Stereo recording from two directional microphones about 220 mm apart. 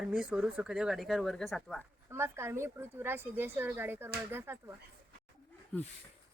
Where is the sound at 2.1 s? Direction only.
10° right (ahead or behind).